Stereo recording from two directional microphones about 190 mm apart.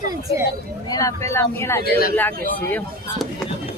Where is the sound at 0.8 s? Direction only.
20° left (ahead or behind).